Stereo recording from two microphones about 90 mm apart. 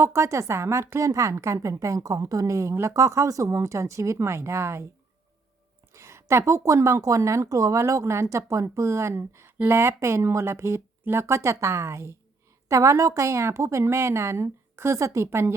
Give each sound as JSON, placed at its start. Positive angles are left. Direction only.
{"t": 0.0, "sound": "a woman's voice", "side_deg": -30}
{"t": 5.9, "sound": "a woman's voice", "side_deg": -30}